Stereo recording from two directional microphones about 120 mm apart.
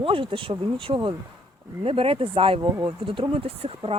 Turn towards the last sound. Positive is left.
turn(degrees=-55)  # may be behind; listen again after turning